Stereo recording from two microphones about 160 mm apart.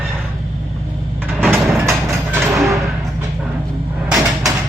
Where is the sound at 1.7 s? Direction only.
15° right (ahead or behind).